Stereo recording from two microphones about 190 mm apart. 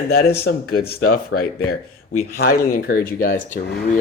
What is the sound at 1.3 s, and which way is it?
Speech, 90° left.